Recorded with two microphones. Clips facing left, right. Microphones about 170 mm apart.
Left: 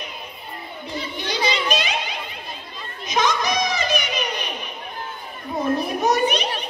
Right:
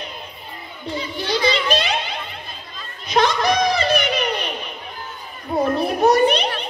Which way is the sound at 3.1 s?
60° right (ahead or behind).